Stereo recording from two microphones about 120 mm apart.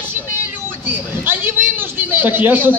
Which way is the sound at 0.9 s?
15° right (ahead or behind).